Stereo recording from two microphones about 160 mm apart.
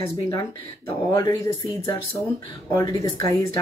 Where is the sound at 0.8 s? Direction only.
20° left (ahead or behind).